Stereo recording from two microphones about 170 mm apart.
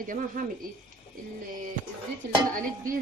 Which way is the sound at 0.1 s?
50° right (ahead or behind).